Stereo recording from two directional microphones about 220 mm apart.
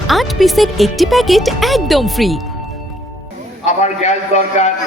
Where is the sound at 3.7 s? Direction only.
30° left (ahead or behind).